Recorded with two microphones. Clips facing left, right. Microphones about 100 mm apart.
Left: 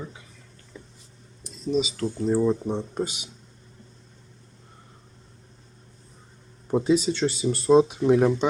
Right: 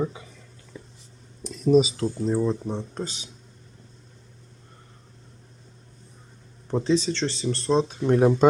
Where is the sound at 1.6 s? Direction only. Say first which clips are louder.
Right 7 dB; 45° right (ahead or behind).